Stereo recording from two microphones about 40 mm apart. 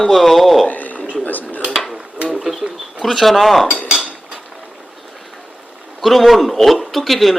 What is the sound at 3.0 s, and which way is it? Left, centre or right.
Speech, centre.